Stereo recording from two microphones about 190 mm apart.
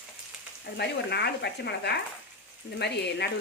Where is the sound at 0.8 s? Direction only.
60° left (ahead or behind).